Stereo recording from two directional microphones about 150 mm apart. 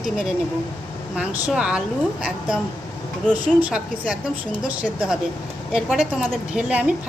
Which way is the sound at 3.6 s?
10° right (ahead or behind).